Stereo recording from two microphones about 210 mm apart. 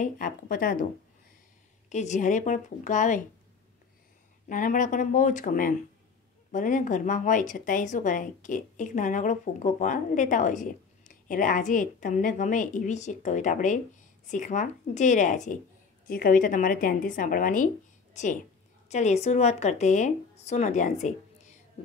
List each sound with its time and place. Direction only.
0.0 s a woman's voice: 40° left (ahead or behind)
1.9 s a woman's voice: 35° left (ahead or behind)
4.5 s a woman's voice: 40° left (ahead or behind)